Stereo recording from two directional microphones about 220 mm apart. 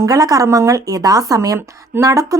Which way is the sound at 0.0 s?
15° right (ahead or behind).